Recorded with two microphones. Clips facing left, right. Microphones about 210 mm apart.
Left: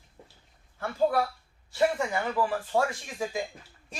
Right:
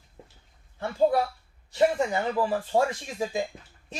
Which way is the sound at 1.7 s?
25° right (ahead or behind).